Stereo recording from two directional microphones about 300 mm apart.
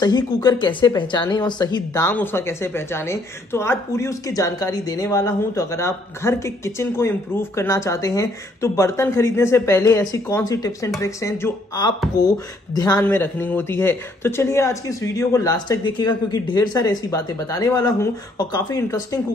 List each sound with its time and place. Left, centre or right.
0.0 s speech: centre